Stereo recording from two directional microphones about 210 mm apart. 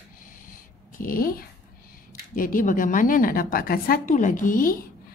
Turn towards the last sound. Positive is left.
turn(degrees=40)  # may be behind; listen again after turning